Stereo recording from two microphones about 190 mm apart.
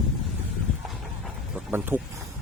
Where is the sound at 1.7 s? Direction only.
10° right (ahead or behind).